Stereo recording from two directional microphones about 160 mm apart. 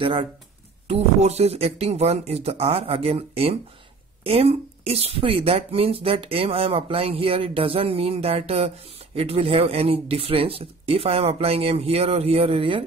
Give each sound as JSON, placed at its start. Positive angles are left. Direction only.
{"t": 0.0, "sound": "speech", "side_deg": -35}